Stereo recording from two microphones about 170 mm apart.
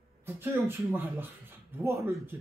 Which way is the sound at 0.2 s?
15° right (ahead or behind).